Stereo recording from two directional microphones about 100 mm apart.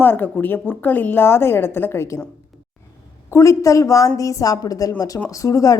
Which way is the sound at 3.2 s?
30° left (ahead or behind).